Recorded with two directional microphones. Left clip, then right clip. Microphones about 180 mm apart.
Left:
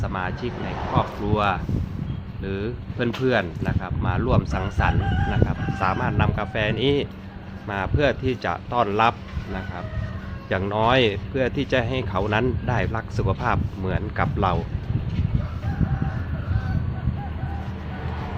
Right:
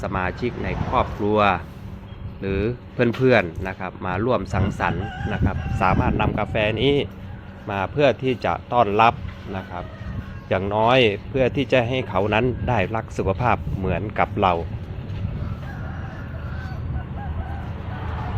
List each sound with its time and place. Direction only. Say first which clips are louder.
0.0 s speech: right 3 dB; 25° right (ahead or behind)
10.5 s speech: right 2 dB; 10° right (ahead or behind)